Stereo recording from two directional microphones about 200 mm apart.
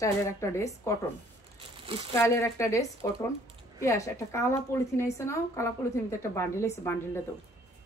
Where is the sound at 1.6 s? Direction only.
25° right (ahead or behind).